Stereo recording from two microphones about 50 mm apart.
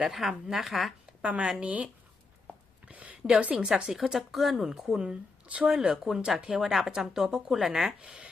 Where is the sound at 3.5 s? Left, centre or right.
Centre.